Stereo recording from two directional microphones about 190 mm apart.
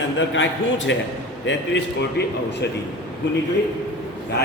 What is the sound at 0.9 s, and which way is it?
Speech, 75° left (ahead or behind).